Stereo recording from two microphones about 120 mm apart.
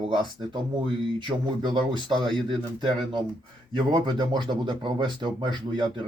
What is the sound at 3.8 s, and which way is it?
Speech, 40° right (ahead or behind).